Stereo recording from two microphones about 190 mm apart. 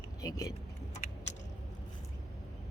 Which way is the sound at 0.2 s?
20° left (ahead or behind).